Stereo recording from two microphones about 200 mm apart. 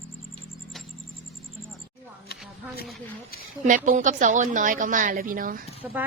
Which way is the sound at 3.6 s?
40° right (ahead or behind).